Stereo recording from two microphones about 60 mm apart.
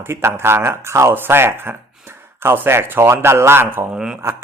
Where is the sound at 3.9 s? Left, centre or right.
Centre.